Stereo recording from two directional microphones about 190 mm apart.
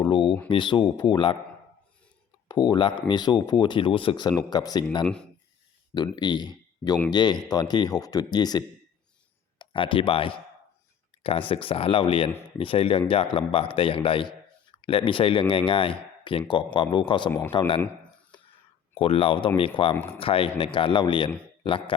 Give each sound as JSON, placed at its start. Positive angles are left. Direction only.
{"t": 0.0, "sound": "a sound", "side_deg": 25}
{"t": 0.4, "sound": "a man's voice", "side_deg": 25}
{"t": 2.5, "sound": "a man's voice", "side_deg": 20}
{"t": 5.0, "sound": "speech", "side_deg": 5}
{"t": 5.9, "sound": "a man's voice", "side_deg": 20}
{"t": 18.9, "sound": "a man's voice", "side_deg": 30}